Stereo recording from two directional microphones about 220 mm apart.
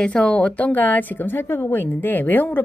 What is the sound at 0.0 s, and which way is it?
A woman's voice, 5° left (ahead or behind).